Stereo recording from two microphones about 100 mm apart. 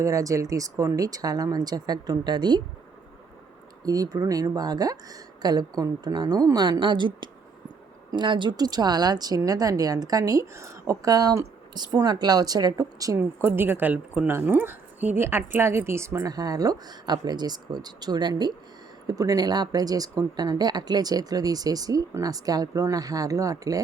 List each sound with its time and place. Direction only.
0.0 s speech: 35° right (ahead or behind)
3.8 s speech: 35° right (ahead or behind)
13.1 s a woman's voice: 20° right (ahead or behind); by 18.5 s 50° right (ahead or behind)
19.0 s speech: 35° right (ahead or behind)